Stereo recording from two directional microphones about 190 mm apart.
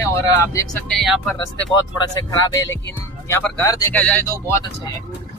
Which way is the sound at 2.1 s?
20° left (ahead or behind).